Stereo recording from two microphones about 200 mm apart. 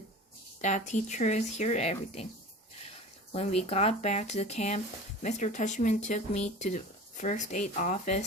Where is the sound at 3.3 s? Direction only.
30° left (ahead or behind).